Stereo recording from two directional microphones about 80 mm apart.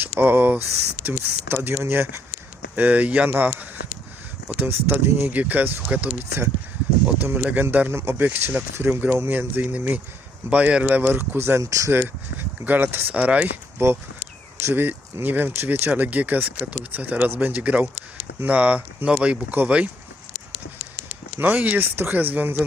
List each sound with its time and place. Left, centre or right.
0.2 s speech: right
2.7 s speech: centre
5.4 s speech: right
10.8 s speech: right
11.6 s speech: right
11.9 s speech: right
13.7 s speech: right
21.3 s speech: right